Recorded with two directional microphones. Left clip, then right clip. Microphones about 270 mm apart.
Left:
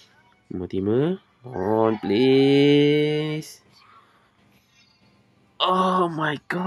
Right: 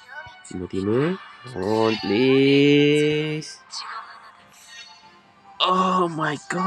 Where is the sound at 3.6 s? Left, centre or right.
Right.